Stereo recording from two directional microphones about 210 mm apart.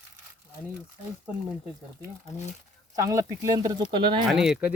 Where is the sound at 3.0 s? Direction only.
15° right (ahead or behind).